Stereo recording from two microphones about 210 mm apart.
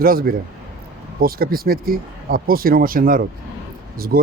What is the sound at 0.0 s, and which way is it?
Speech, 45° right (ahead or behind).